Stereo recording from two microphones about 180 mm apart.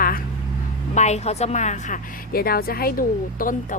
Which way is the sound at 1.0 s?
40° left (ahead or behind).